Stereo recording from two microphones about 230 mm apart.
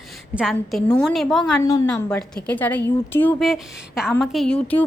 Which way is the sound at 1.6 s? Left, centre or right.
Centre.